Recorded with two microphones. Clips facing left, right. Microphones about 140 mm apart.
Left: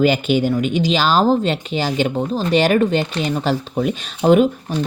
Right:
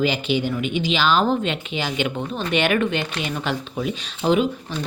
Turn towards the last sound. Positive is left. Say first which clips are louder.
# left 6 dB
turn(degrees=55)  # may be behind; listen again after turning